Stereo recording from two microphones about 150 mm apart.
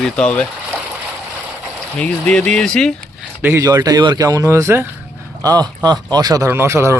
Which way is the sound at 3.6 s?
25° right (ahead or behind).